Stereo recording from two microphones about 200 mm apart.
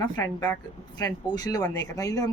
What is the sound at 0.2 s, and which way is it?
A woman's voice, 15° left (ahead or behind).